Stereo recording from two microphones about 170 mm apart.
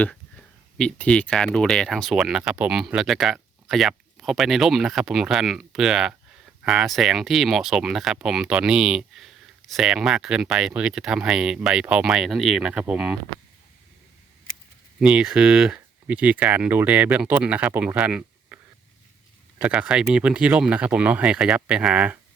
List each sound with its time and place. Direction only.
0.0 s speech: 5° left (ahead or behind)
14.9 s speech: 5° right (ahead or behind)